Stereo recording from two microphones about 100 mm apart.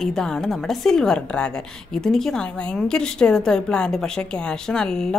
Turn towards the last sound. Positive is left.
turn(degrees=5)  # may be behind; listen again after turning